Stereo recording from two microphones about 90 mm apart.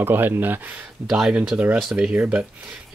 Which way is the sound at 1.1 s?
10° right (ahead or behind).